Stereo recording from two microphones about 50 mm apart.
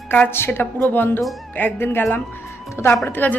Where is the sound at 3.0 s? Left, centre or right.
Left.